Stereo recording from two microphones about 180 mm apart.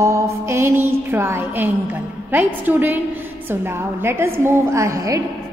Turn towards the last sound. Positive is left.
turn(degrees=-15)  # may be behind; listen again after turning